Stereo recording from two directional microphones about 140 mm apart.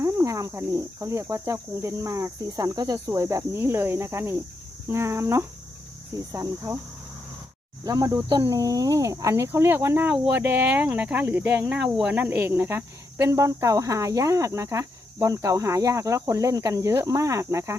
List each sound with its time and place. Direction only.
0.0 s speech: 20° right (ahead or behind)
7.9 s speech: 25° right (ahead or behind)